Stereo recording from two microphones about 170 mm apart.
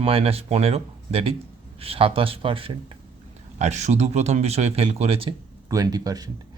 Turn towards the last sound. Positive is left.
turn(degrees=-20)  # may be behind; listen again after turning